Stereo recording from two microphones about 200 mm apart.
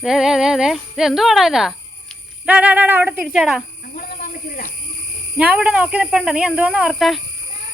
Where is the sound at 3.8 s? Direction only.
45° left (ahead or behind).